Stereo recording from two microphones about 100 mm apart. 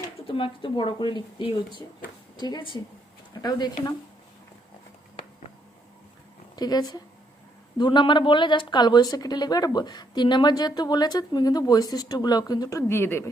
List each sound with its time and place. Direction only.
0.3 s speech: 60° left (ahead or behind)
6.6 s speech: 40° left (ahead or behind)
7.8 s speech: 50° left (ahead or behind)
12.9 s speech: 25° left (ahead or behind)